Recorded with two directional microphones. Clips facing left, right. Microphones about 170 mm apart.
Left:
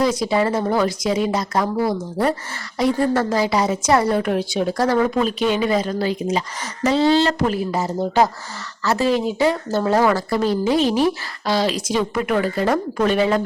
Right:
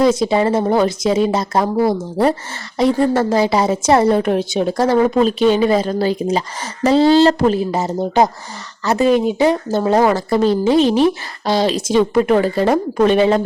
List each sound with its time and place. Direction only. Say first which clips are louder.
0.0 s speech: right 4 dB; 25° right (ahead or behind)